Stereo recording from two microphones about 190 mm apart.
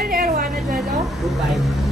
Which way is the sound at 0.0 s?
50° right (ahead or behind).